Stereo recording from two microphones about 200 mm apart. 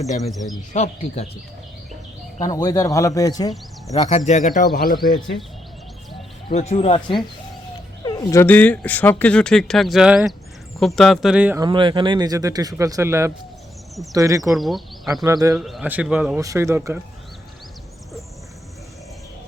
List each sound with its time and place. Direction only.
0.2 s speech: centre (ahead or behind)
0.7 s speech: 35° left (ahead or behind)
2.4 s speech: 20° left (ahead or behind)
3.9 s speech: 30° left (ahead or behind)
6.5 s speech: 35° left (ahead or behind); by 11.6 s 5° right (ahead or behind)
11.6 s speech: 25° right (ahead or behind)
14.5 s speech: centre (ahead or behind)
15.2 s speech: 20° right (ahead or behind)
15.5 s speech: centre (ahead or behind)